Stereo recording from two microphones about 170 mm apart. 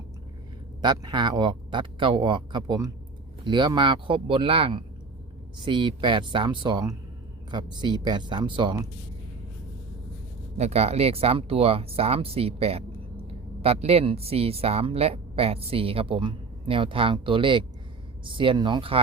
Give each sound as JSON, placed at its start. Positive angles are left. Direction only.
{"t": 0.8, "sound": "speech", "side_deg": -25}
{"t": 10.6, "sound": "a woman's voice", "side_deg": -40}